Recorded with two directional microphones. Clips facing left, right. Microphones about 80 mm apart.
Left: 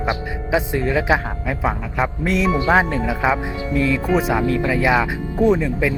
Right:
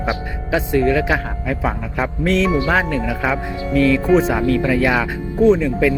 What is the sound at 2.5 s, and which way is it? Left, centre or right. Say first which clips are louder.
Speech: left 1 dB; left.